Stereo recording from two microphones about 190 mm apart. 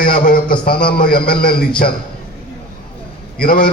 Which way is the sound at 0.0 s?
50° left (ahead or behind).